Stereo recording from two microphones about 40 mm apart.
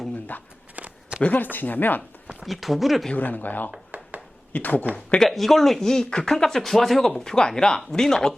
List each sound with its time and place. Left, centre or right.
0.3 s speech: left
0.8 s a sound: right
1.3 s speech: left
2.2 s a sound: centre
2.5 s speech: centre
3.2 s speech: left
3.9 s a sound: right
4.5 s speech: left
5.2 s speech: centre
7.3 s speech: centre